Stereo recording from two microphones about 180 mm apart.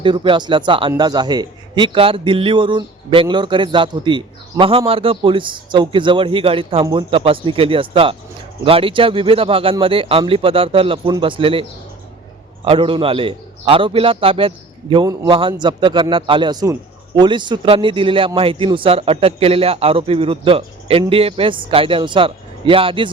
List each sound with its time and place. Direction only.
0.0 s a man's voice: 25° right (ahead or behind)
12.6 s a man's voice: 30° right (ahead or behind)